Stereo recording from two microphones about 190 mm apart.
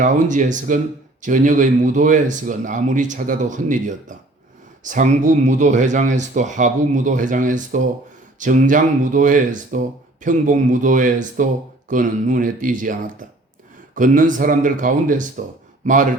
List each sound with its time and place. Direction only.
0.0 s speech: 40° right (ahead or behind)